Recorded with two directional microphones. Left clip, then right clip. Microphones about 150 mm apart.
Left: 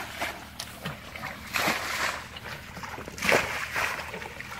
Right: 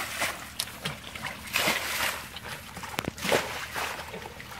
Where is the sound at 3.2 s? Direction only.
20° right (ahead or behind).